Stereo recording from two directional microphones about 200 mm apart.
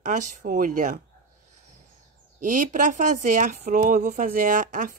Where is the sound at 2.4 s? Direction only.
40° right (ahead or behind).